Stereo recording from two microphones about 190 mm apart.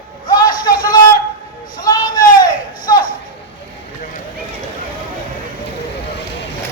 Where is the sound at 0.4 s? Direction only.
50° left (ahead or behind).